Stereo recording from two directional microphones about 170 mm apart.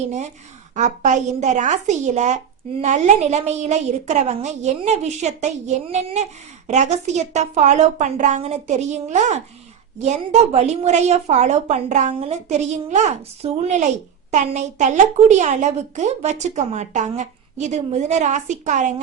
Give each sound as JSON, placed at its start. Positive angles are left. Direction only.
{"t": 0.7, "sound": "a woman's voice", "side_deg": -45}